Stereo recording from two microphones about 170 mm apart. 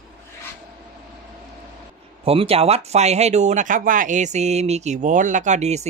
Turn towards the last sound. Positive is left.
turn(degrees=-40)  # may be behind; listen again after turning